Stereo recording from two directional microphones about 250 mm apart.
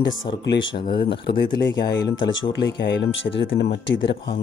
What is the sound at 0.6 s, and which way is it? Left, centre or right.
Speech, centre.